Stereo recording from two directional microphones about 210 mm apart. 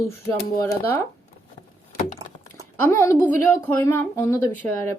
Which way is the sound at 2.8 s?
10° left (ahead or behind).